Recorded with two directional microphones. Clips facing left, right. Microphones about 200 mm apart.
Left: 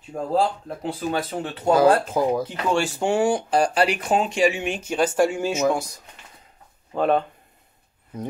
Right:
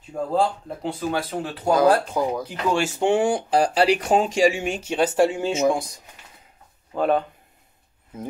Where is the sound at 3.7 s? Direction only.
30° right (ahead or behind).